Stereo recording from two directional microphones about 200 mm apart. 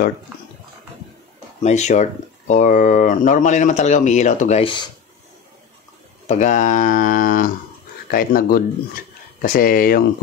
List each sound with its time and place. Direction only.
1.6 s speech: 35° left (ahead or behind)
6.2 s speech: 35° left (ahead or behind)